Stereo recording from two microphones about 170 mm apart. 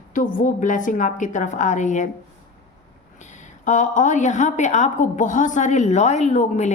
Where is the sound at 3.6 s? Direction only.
45° left (ahead or behind).